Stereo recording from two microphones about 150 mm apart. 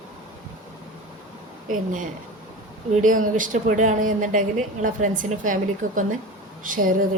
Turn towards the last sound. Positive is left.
turn(degrees=-65)  # may be behind; listen again after turning